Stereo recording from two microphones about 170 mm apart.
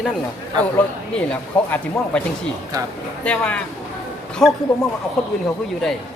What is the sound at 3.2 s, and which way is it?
Speech, 5° left (ahead or behind).